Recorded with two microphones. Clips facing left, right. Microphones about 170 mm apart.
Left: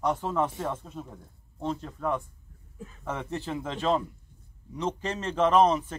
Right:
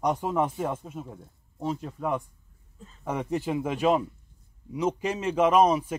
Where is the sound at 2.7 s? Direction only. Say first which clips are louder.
Left 6 dB; 70° left (ahead or behind).